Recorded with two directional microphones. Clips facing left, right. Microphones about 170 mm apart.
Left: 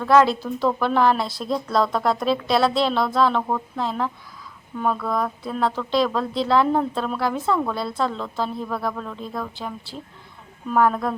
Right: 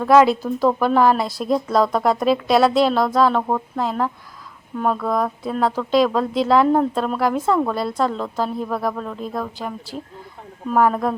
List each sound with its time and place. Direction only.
0.0 s speech: 5° right (ahead or behind)
10.8 s speech: 5° right (ahead or behind)